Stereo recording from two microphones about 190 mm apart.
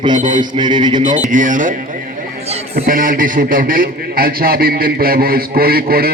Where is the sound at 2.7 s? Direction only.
50° right (ahead or behind).